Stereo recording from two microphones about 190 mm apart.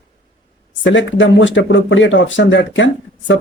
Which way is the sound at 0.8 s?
75° left (ahead or behind).